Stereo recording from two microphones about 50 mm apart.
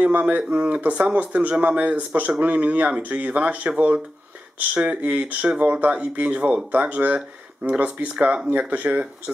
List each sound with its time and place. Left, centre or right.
0.0 s speech: right